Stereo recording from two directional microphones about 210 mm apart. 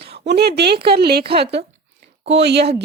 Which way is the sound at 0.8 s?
50° right (ahead or behind).